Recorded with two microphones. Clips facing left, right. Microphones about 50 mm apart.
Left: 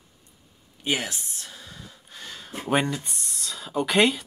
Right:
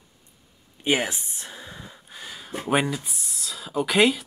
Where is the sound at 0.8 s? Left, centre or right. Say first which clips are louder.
Right 4 dB; right.